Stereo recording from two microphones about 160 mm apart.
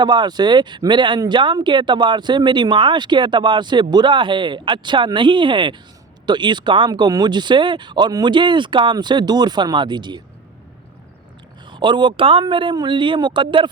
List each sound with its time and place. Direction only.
0.0 s speech: 30° right (ahead or behind)
11.7 s speech: 30° right (ahead or behind)